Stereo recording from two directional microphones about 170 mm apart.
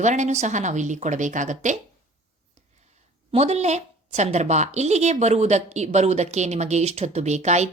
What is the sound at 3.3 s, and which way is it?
A woman's voice, 40° right (ahead or behind).